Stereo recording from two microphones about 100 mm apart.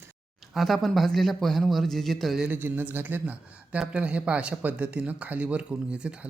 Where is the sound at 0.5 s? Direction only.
Centre (ahead or behind).